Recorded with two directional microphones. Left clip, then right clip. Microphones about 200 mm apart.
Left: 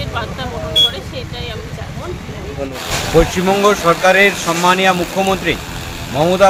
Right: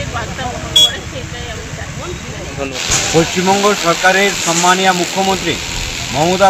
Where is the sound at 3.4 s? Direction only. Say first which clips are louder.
Even; 20° left (ahead or behind).